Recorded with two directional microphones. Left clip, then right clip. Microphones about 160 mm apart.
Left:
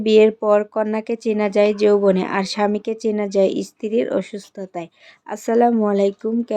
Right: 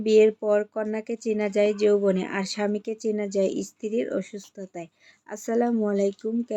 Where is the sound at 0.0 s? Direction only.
20° left (ahead or behind).